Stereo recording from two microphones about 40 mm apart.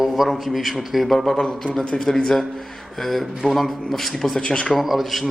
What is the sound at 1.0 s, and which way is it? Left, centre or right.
Speech, centre.